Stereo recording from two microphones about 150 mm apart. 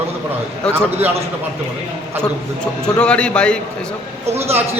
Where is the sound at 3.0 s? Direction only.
5° left (ahead or behind).